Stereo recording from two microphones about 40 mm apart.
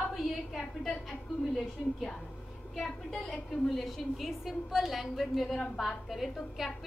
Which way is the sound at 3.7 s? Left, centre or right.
Centre.